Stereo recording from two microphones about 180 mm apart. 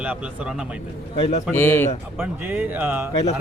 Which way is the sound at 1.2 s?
40° left (ahead or behind).